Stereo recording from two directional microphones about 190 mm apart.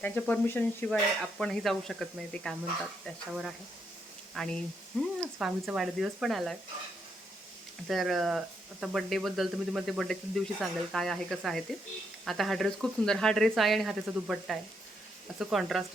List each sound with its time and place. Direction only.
0.0 s speech: 10° left (ahead or behind)
4.4 s speech: 5° left (ahead or behind)
7.9 s speech: centre (ahead or behind)